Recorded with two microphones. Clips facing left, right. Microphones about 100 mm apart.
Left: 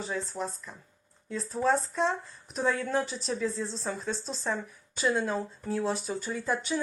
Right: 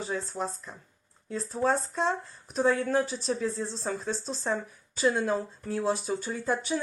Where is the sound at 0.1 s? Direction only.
30° right (ahead or behind).